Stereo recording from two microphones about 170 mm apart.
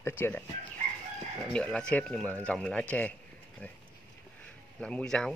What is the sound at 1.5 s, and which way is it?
Speech, 5° left (ahead or behind).